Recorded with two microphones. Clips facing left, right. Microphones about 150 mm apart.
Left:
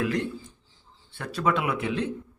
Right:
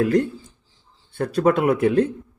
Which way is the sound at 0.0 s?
45° right (ahead or behind).